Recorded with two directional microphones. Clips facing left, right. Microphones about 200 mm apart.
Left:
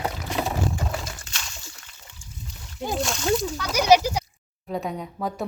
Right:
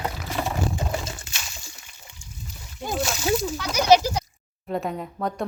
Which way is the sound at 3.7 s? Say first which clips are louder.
Even; 10° left (ahead or behind).